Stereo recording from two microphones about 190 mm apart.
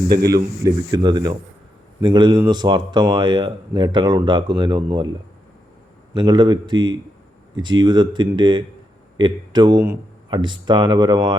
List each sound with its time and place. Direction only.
0.6 s speech: 20° right (ahead or behind)
6.1 s speech: 25° right (ahead or behind)